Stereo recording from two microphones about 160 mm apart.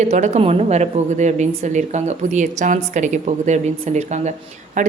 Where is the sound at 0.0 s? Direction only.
45° right (ahead or behind).